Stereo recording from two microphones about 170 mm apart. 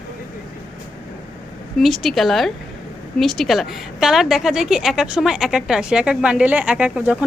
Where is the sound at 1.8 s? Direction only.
Centre (ahead or behind).